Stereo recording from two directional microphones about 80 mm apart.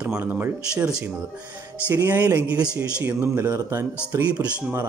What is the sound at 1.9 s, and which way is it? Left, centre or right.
Speech, right.